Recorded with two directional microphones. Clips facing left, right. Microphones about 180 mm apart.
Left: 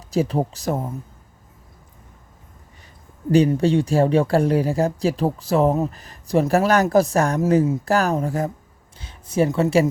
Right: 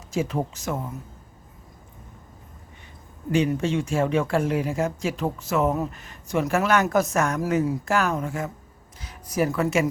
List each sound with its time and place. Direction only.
0.1 s speech: 35° left (ahead or behind)
3.3 s speech: 35° left (ahead or behind)
7.9 s speech: 35° left (ahead or behind)